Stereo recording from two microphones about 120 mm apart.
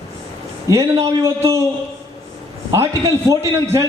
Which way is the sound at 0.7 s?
30° right (ahead or behind).